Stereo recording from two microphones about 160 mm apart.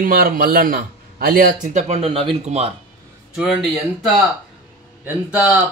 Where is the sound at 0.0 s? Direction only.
65° right (ahead or behind); by 2.7 s 35° right (ahead or behind).